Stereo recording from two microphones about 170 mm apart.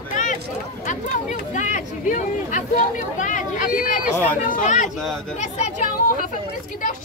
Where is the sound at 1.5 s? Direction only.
45° left (ahead or behind).